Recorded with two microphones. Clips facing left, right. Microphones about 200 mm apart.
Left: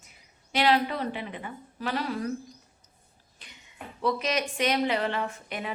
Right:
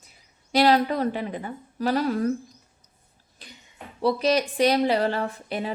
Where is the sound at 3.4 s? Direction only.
35° right (ahead or behind).